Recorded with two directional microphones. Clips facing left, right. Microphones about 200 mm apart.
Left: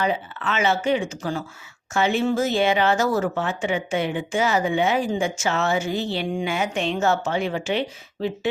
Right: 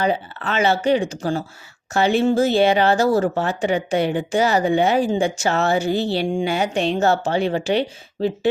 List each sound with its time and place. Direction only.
0.0 s speech: 35° right (ahead or behind)